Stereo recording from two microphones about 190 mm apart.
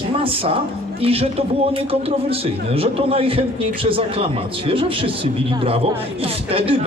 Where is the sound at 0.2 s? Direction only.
30° right (ahead or behind).